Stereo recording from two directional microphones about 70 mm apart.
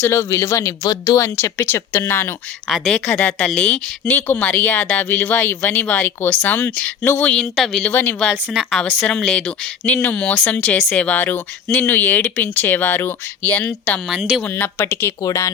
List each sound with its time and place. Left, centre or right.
0.0 s speech: left
0.9 s speech: left
1.2 s speech: left
2.6 s speech: centre
3.1 s speech: left
7.3 s speech: centre
7.8 s speech: left
14.1 s speech: centre
14.6 s speech: left
15.2 s speech: left